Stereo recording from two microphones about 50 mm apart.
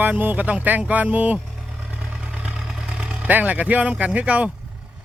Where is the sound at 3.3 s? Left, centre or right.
Right.